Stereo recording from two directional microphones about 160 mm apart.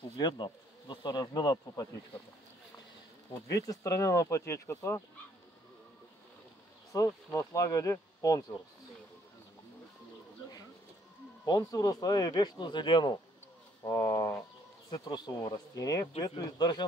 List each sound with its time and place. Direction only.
0.2 s speech: 25° left (ahead or behind)
3.4 s speech: 20° left (ahead or behind)
6.9 s speech: 20° left (ahead or behind)
11.4 s speech: 25° left (ahead or behind)